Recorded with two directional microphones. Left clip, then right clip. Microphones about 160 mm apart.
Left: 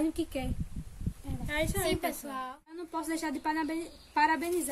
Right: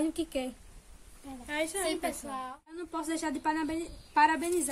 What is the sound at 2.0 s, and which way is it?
Speech, 15° left (ahead or behind).